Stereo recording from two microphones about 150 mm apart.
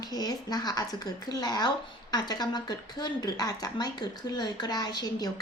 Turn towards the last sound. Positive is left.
turn(degrees=25)  # may be behind; listen again after turning